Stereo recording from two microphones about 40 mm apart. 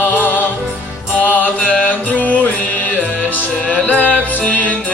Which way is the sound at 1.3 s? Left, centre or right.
Left.